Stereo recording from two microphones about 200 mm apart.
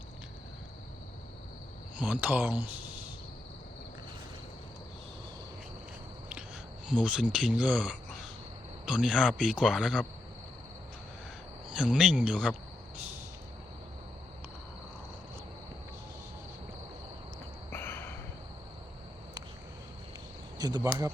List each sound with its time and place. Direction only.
2.0 s speech: 5° right (ahead or behind)
6.8 s speech: 5° right (ahead or behind)
11.8 s speech: 5° right (ahead or behind)
17.7 s a sound: 10° left (ahead or behind)
20.6 s speech: 20° right (ahead or behind)